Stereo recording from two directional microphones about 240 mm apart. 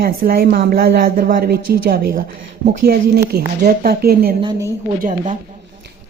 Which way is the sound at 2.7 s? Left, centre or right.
Right.